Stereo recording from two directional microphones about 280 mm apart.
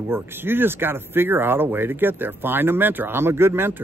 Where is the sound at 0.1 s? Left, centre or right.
Centre.